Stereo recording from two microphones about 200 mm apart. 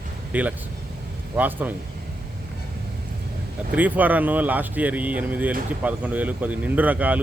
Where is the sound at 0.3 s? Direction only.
10° right (ahead or behind).